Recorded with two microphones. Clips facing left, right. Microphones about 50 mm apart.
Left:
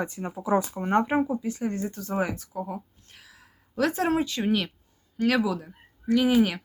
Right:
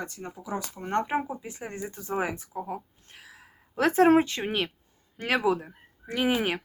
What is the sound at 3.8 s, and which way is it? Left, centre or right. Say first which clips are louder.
Speech: right 4 dB; right.